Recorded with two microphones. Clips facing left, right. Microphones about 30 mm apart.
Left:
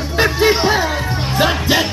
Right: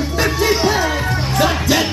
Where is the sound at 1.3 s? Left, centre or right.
Centre.